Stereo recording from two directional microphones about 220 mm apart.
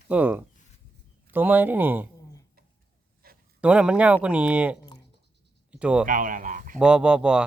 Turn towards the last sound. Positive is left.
turn(degrees=-5)  # may be behind; listen again after turning